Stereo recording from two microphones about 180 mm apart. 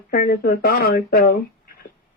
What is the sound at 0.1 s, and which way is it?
Speech, 60° left (ahead or behind).